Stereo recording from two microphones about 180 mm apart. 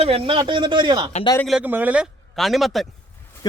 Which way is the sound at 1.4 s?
5° right (ahead or behind).